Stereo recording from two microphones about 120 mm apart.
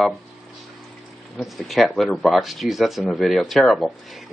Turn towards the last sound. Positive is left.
turn(degrees=0)  # may be behind; listen again after turning